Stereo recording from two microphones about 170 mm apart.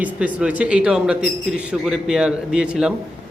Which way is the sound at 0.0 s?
5° right (ahead or behind).